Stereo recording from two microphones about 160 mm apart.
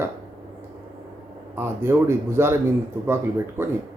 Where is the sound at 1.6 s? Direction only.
15° right (ahead or behind).